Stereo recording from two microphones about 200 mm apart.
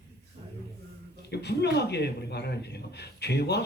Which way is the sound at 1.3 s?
55° left (ahead or behind).